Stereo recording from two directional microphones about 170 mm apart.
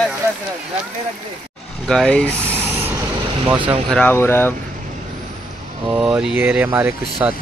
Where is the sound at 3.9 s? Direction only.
10° left (ahead or behind).